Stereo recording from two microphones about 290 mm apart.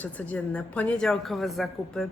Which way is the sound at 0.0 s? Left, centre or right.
Centre.